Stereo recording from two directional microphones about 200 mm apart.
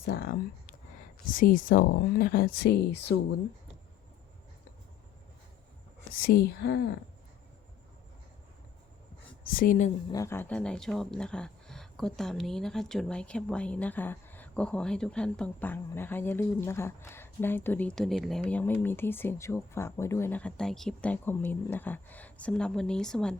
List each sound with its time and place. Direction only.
0.0 s speech: 50° left (ahead or behind)
6.1 s speech: 50° left (ahead or behind)
9.5 s speech: 45° left (ahead or behind)
10.1 s speech: 15° left (ahead or behind)